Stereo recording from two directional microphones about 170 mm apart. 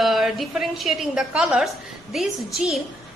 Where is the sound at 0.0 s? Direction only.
Centre (ahead or behind).